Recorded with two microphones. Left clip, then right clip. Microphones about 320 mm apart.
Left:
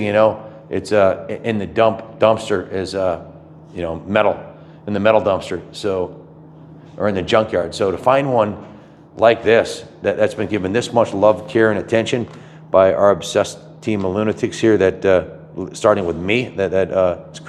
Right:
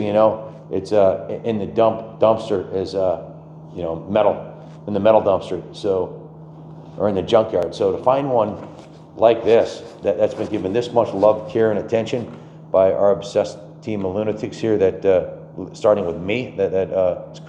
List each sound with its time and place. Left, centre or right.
0.0 s a man's voice: left